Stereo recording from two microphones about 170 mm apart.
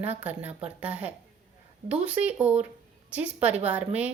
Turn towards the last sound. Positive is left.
turn(degrees=-10)  # may be behind; listen again after turning